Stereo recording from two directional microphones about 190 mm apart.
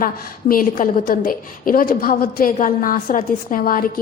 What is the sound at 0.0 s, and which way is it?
A woman's voice, 50° left (ahead or behind).